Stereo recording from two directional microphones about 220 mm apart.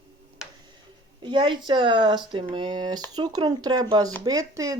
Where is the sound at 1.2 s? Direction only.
20° right (ahead or behind).